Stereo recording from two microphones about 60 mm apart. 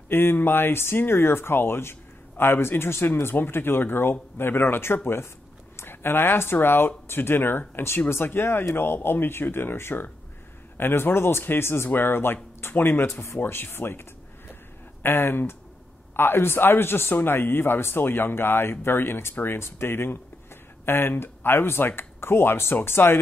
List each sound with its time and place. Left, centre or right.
0.1 s a man's voice: left
15.0 s a man's voice: left